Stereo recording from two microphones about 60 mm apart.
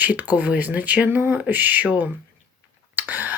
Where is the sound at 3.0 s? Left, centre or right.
Right.